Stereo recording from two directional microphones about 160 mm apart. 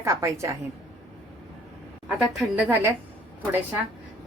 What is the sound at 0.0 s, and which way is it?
Speech, 20° right (ahead or behind).